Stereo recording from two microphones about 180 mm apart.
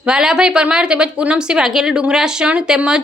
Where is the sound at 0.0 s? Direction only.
5° right (ahead or behind).